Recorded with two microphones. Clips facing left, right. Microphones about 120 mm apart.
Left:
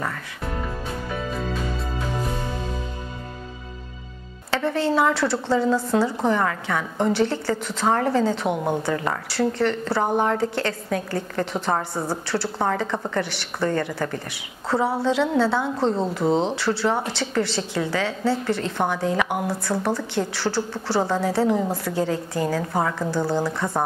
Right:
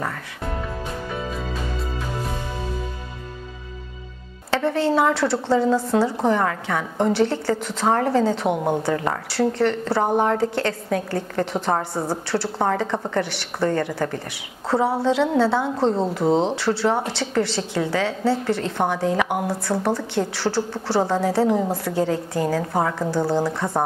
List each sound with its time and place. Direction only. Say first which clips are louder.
4.7 s a woman's voice: right 1 dB; 50° right (ahead or behind); by 10.2 s 30° right (ahead or behind)
10.2 s a woman's voice: right 2 dB; 40° right (ahead or behind)
11.5 s a woman's voice: right 1 dB; 30° right (ahead or behind)
15.0 s a woman's voice: right 2 dB; 50° right (ahead or behind)
15.3 s speech: right 2 dB; 35° right (ahead or behind)
17.0 s a woman's voice: right 1 dB; 60° right (ahead or behind)
17.5 s a woman's voice: right 2 dB; 45° right (ahead or behind)
19.4 s a woman's voice: right 2 dB; 30° right (ahead or behind)